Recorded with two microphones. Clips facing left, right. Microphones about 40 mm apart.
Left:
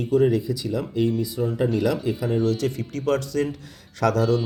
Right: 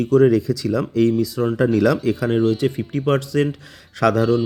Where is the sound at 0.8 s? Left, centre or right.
Right.